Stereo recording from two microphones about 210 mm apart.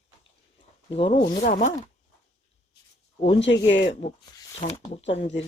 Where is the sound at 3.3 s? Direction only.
55° left (ahead or behind).